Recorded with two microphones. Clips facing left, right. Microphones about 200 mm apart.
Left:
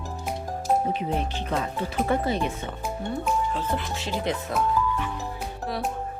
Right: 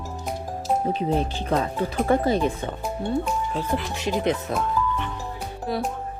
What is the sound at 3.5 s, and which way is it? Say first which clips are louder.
Speech: right 2 dB; 15° right (ahead or behind).